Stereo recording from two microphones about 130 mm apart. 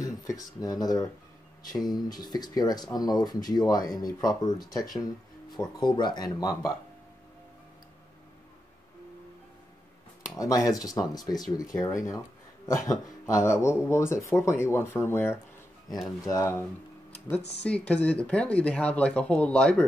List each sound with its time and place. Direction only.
0.0 s speech: 25° left (ahead or behind)
10.3 s speech: 25° left (ahead or behind)
17.3 s speech: 10° left (ahead or behind)